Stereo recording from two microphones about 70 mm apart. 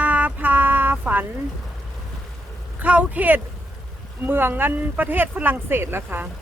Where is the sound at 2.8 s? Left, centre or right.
Right.